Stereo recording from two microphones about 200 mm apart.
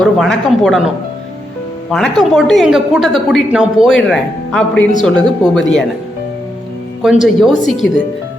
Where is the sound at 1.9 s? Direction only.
Centre (ahead or behind).